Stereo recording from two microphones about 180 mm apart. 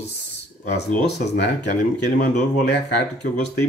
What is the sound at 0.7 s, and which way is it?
Speech, 65° left (ahead or behind).